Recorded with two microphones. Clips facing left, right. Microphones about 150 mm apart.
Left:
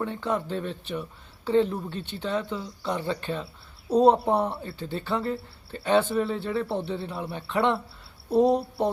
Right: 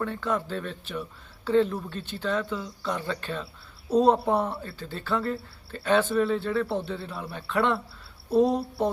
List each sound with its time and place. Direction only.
0.0 s speech: 15° left (ahead or behind)